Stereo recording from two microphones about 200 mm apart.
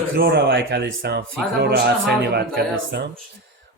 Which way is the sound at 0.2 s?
55° right (ahead or behind).